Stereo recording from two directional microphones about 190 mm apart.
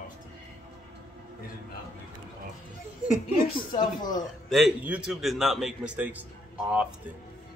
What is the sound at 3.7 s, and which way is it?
Speech, 20° left (ahead or behind).